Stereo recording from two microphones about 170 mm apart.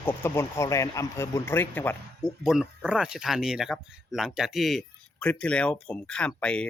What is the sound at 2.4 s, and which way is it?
Speech, 5° right (ahead or behind).